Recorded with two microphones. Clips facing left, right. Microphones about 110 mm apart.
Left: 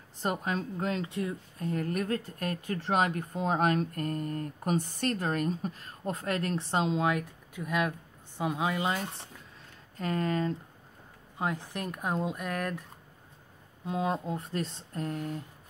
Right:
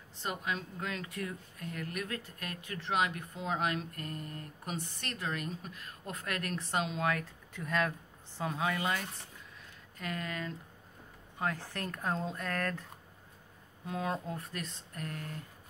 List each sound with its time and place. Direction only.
0.2 s speech: 40° left (ahead or behind); by 9.1 s 25° left (ahead or behind)
9.9 s speech: 35° left (ahead or behind)
11.3 s speech: 20° left (ahead or behind)
13.8 s speech: 25° left (ahead or behind)